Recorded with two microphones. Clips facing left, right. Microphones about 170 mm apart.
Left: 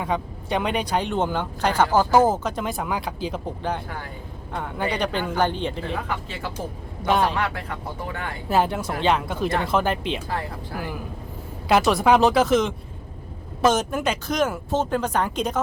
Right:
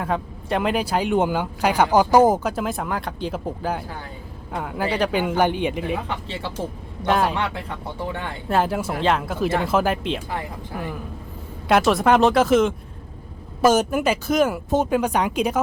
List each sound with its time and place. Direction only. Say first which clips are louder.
0.0 s speech: right 1 dB; centre (ahead or behind)
5.2 s speech: right 3 dB; 15° right (ahead or behind)
6.1 s speech: right 1 dB; 25° right (ahead or behind)
7.0 s speech: right 1 dB; centre (ahead or behind)
7.3 s speech: even; 25° right (ahead or behind)
8.4 s speech: even; centre (ahead or behind)
11.7 s speech: right 1 dB; centre (ahead or behind)